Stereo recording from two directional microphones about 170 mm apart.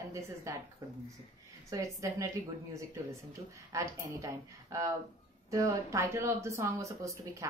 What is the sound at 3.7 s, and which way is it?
A woman's voice, 15° right (ahead or behind).